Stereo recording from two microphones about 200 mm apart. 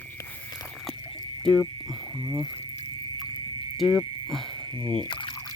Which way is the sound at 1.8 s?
20° right (ahead or behind).